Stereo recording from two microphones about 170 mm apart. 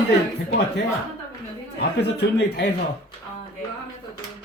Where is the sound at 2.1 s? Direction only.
90° left.